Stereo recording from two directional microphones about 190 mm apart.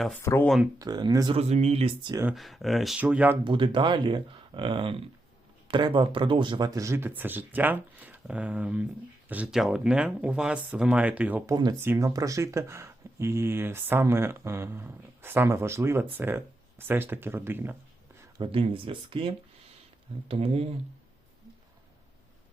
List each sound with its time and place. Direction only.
0.2 s speech: 15° left (ahead or behind)
0.4 s speech: centre (ahead or behind)
0.8 s speech: 20° right (ahead or behind)
1.4 s speech: 35° right (ahead or behind)
2.3 s speech: centre (ahead or behind)
3.4 s speech: 25° right (ahead or behind)
18.3 s speech: 25° right (ahead or behind)